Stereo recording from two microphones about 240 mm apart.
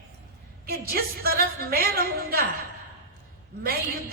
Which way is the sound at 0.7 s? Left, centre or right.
Right.